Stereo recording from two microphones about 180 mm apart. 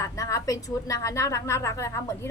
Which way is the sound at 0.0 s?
15° left (ahead or behind).